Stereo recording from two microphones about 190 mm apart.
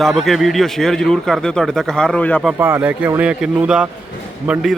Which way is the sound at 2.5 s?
10° right (ahead or behind).